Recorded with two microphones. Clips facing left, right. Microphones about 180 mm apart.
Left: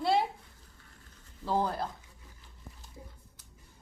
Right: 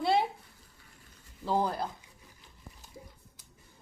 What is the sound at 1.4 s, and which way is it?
Speech, 5° right (ahead or behind).